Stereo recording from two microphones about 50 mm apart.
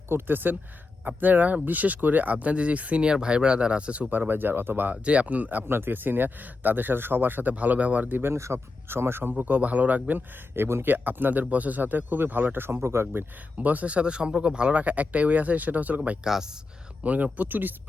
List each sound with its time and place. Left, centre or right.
0.1 s speech: right
4.3 s speech: right
4.9 s speech: right
5.6 s speech: right
8.2 s speech: right
8.9 s speech: right
9.3 s speech: right
10.8 s speech: right
12.8 s speech: right
13.6 s speech: right
16.2 s speech: centre
17.0 s speech: right